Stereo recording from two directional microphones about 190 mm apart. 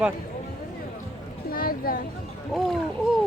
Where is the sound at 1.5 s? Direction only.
50° left (ahead or behind).